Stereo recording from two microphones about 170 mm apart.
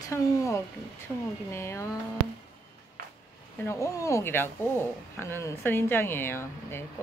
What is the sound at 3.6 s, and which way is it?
Speech, 15° left (ahead or behind).